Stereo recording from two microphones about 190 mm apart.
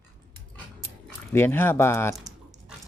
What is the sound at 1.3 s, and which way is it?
Speech, 10° left (ahead or behind).